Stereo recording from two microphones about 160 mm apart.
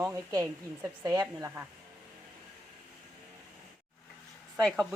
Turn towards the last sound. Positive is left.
turn(degrees=0)  # may be behind; listen again after turning